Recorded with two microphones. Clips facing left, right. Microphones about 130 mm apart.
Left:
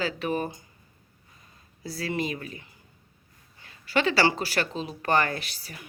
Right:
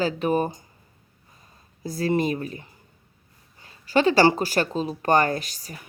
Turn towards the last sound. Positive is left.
turn(degrees=-40)  # may be behind; listen again after turning